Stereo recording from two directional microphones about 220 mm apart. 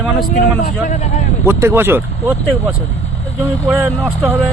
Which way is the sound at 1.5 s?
10° right (ahead or behind).